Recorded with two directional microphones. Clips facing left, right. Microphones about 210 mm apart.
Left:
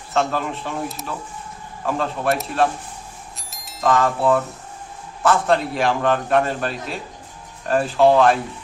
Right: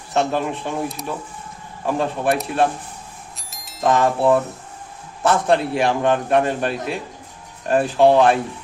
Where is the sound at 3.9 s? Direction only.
20° right (ahead or behind).